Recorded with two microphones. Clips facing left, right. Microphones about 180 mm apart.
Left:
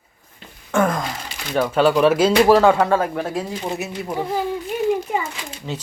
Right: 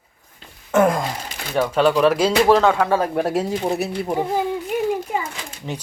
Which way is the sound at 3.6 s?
35° right (ahead or behind).